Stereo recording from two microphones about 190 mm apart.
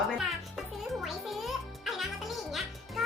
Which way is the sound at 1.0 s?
Centre (ahead or behind).